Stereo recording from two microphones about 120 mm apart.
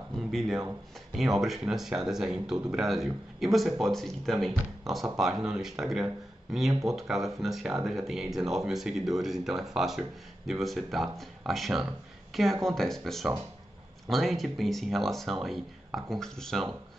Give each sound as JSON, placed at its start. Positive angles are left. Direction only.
{"t": 0.3, "sound": "speech", "side_deg": 0}
{"t": 6.7, "sound": "speech", "side_deg": -30}
{"t": 7.0, "sound": "speech", "side_deg": 0}